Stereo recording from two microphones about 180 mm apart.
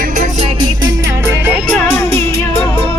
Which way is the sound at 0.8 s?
15° right (ahead or behind).